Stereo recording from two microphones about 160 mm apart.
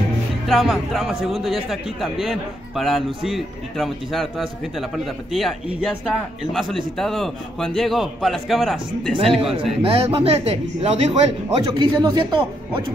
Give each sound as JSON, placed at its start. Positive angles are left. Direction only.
{"t": 0.5, "sound": "a man's voice", "side_deg": 0}
{"t": 9.6, "sound": "speech", "side_deg": -35}
{"t": 11.6, "sound": "speech", "side_deg": -25}